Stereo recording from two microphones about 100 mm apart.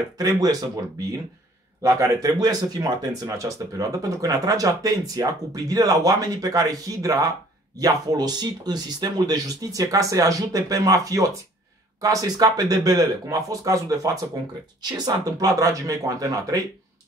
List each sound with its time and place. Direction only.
0.2 s speech: 40° right (ahead or behind)